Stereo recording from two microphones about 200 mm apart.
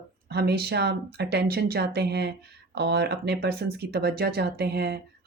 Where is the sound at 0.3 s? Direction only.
55° right (ahead or behind).